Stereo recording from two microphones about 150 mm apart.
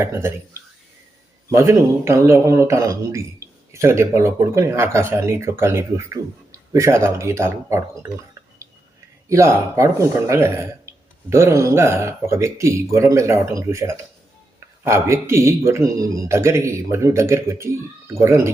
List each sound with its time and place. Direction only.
0.0 s a man's voice: 15° right (ahead or behind)
9.3 s speech: 20° right (ahead or behind)